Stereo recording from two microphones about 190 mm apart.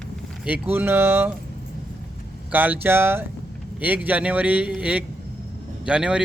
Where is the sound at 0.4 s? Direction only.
10° right (ahead or behind).